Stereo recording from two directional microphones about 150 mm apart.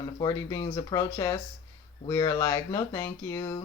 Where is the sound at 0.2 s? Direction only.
25° left (ahead or behind).